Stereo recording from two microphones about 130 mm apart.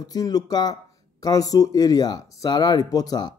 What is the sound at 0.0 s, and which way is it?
A man's voice, 30° left (ahead or behind).